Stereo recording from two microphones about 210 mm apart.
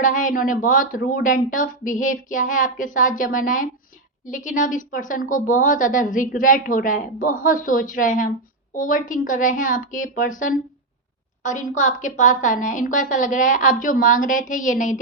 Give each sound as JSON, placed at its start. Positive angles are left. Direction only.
{"t": 0.0, "sound": "a woman's voice", "side_deg": 40}